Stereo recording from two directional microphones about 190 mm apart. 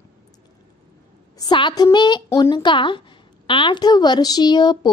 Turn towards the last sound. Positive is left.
turn(degrees=25)  # may be behind; listen again after turning